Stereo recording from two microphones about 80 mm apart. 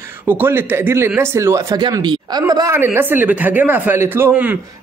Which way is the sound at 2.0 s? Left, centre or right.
Right.